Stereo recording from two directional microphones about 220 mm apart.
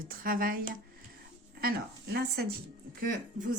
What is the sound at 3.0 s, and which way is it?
Speech, 35° right (ahead or behind).